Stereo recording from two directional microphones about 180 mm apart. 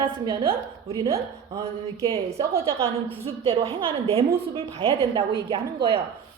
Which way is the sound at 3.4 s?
30° right (ahead or behind).